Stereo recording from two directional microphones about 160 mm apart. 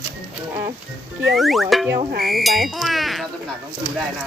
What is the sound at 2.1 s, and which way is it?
Speech, 70° right (ahead or behind).